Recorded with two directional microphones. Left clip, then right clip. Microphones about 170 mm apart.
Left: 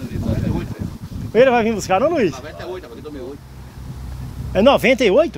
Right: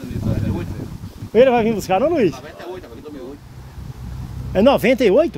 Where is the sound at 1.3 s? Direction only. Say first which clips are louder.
Even; 40° right (ahead or behind).